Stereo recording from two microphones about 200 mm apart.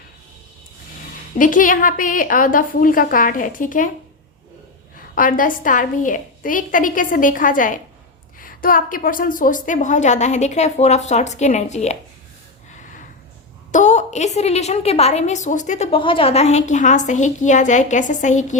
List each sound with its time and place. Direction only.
1.4 s a woman's voice: 40° left (ahead or behind)
5.1 s a woman's voice: 45° left (ahead or behind)
13.7 s a woman's voice: 35° left (ahead or behind)